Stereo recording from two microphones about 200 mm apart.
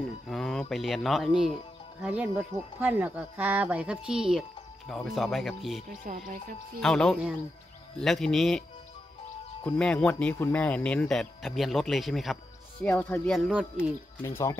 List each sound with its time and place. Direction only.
0.3 s speech: centre (ahead or behind)
6.0 s speech: 40° right (ahead or behind)
6.8 s speech: 5° left (ahead or behind)
9.7 s speech: 5° left (ahead or behind)